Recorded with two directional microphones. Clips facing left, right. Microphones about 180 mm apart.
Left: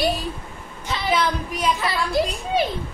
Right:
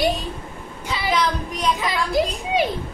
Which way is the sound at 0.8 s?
10° right (ahead or behind).